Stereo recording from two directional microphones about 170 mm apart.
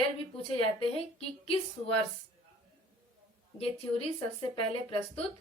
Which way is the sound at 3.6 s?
30° left (ahead or behind).